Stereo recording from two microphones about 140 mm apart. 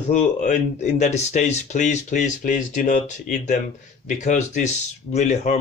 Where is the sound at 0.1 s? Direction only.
60° left (ahead or behind).